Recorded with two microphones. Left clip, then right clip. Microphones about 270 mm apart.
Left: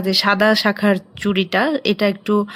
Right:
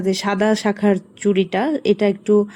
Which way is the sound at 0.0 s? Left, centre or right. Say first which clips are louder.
Left 4 dB; centre.